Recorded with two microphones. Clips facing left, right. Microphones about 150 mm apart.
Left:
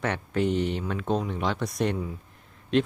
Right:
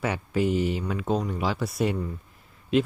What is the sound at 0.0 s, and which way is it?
Speech, 5° right (ahead or behind).